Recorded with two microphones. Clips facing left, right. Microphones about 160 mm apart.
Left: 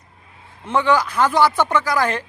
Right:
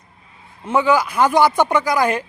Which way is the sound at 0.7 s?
10° right (ahead or behind).